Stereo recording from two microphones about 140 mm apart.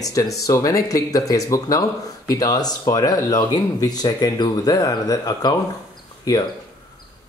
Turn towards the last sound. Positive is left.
turn(degrees=25)  # may be behind; listen again after turning